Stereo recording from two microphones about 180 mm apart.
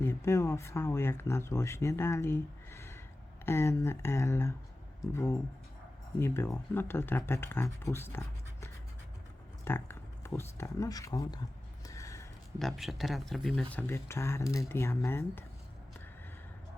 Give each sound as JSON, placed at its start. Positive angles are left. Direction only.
{"t": 0.0, "sound": "speech", "side_deg": 15}
{"t": 11.9, "sound": "a sound", "side_deg": 15}
{"t": 12.5, "sound": "speech", "side_deg": 0}